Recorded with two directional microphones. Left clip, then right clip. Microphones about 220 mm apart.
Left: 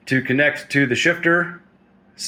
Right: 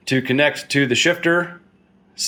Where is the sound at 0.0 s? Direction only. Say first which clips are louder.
Even; 15° right (ahead or behind).